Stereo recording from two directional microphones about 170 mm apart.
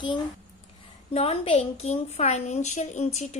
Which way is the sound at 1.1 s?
35° left (ahead or behind).